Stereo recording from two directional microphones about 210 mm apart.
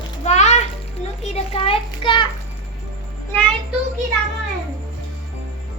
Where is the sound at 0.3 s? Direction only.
30° left (ahead or behind).